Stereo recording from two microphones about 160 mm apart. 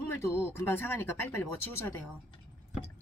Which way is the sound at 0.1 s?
15° left (ahead or behind).